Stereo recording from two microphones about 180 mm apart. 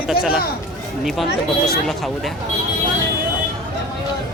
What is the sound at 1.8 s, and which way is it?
Speech, centre (ahead or behind).